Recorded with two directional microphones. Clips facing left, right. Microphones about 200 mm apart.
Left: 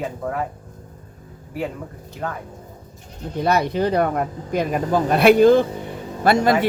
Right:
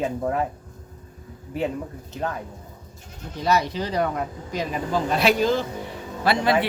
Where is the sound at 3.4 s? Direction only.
55° left (ahead or behind).